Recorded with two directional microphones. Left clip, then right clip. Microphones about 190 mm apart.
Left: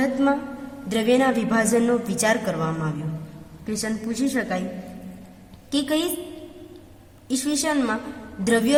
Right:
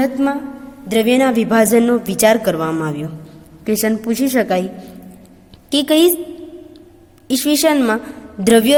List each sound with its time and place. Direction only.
0.0 s a woman's voice: 35° right (ahead or behind)
5.7 s a woman's voice: 45° right (ahead or behind)
7.3 s a woman's voice: 45° right (ahead or behind)